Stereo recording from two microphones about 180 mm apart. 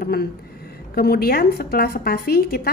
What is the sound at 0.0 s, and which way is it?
A woman's voice, 60° left (ahead or behind).